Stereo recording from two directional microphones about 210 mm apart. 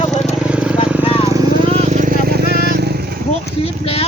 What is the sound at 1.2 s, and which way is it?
Vehicle, 15° right (ahead or behind).